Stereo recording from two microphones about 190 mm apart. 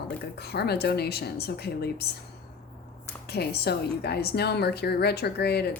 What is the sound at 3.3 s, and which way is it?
Speech, 55° left (ahead or behind).